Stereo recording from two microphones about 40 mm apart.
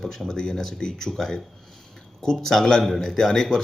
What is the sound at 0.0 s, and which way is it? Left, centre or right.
Speech, centre.